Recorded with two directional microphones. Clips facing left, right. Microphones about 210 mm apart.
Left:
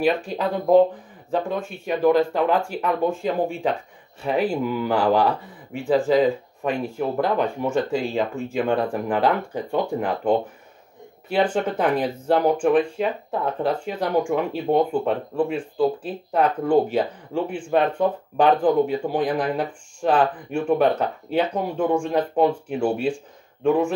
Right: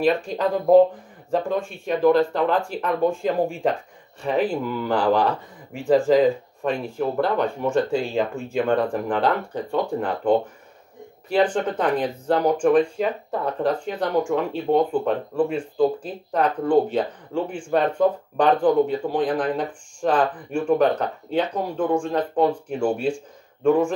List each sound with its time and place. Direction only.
0.0 s speech: centre (ahead or behind)
11.5 s speech: 10° left (ahead or behind)